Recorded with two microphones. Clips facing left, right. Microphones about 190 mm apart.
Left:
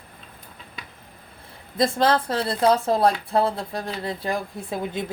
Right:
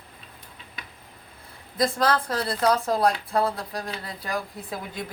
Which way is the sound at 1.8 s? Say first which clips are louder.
Left 3 dB; 25° left (ahead or behind).